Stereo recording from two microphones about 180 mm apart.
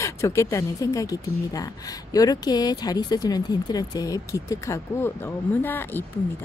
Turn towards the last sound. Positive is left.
turn(degrees=10)  # may be behind; listen again after turning